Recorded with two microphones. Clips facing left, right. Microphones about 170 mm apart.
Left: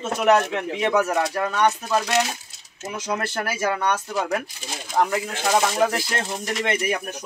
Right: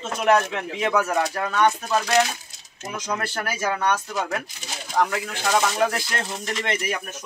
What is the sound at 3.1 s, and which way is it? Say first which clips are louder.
Speech: left 2 dB; 25° left (ahead or behind).